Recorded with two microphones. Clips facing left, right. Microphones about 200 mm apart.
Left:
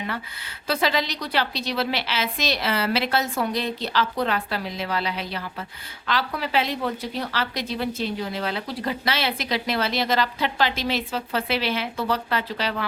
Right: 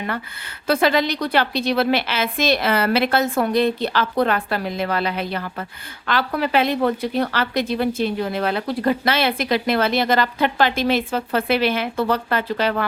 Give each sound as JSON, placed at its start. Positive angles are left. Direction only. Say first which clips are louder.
{"t": 0.7, "sound": "a woman's voice", "louder": "right 6 dB", "side_deg": -55}